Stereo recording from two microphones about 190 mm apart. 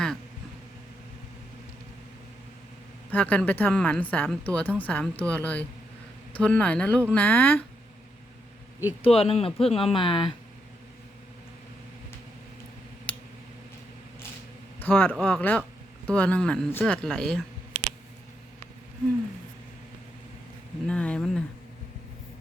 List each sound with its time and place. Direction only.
3.1 s a woman's voice: 10° left (ahead or behind)
9.0 s speech: 30° left (ahead or behind)
13.1 s a sound: 10° left (ahead or behind)
14.8 s a man's voice: 10° left (ahead or behind)
20.8 s speech: 5° left (ahead or behind)